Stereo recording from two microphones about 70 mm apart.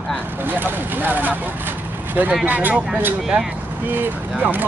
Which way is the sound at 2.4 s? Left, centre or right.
Right.